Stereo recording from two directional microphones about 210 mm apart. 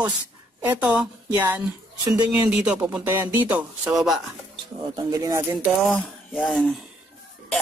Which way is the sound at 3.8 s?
Centre (ahead or behind).